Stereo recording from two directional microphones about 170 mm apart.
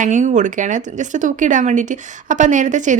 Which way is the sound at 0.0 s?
45° right (ahead or behind).